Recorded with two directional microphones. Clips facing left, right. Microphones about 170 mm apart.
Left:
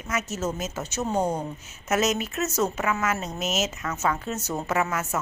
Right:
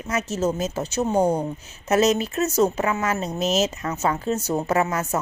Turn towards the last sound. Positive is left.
turn(degrees=-35)  # may be behind; listen again after turning